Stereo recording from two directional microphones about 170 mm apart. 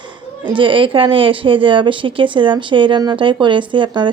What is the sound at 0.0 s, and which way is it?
Speech, 30° right (ahead or behind).